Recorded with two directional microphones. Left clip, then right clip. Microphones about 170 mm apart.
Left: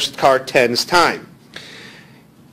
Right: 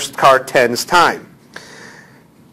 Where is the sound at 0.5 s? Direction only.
10° left (ahead or behind).